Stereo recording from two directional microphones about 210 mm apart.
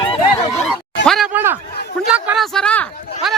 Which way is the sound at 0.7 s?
Centre (ahead or behind).